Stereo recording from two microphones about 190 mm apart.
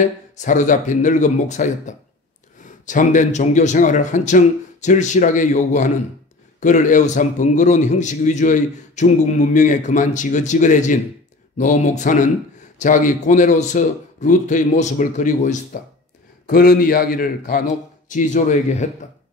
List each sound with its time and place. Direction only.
0.4 s a man's voice: 40° left (ahead or behind)